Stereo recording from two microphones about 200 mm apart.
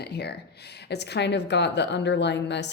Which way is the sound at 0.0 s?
55° left (ahead or behind).